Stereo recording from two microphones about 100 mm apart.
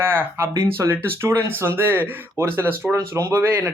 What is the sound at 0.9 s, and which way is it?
Speech, 20° right (ahead or behind).